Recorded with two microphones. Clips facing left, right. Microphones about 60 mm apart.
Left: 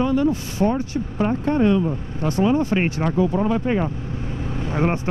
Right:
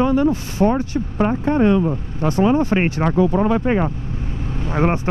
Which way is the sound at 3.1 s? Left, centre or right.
Right.